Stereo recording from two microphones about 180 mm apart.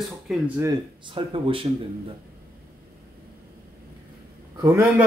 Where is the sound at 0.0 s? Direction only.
Centre (ahead or behind).